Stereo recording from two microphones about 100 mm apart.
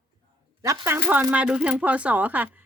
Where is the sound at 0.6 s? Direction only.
25° right (ahead or behind).